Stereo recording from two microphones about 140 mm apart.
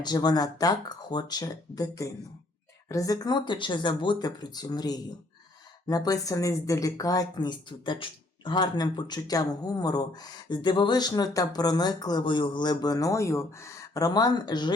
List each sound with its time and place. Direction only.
0.0 s speech: 30° left (ahead or behind)